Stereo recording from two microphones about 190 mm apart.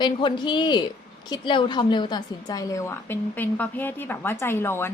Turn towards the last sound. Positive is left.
turn(degrees=10)  # may be behind; listen again after turning